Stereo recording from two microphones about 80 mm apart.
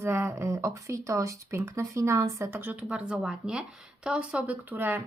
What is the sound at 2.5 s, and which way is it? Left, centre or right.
Speech, right.